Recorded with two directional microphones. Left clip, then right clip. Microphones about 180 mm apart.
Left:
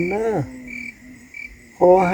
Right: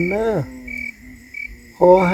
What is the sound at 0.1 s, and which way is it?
Frog, 15° left (ahead or behind).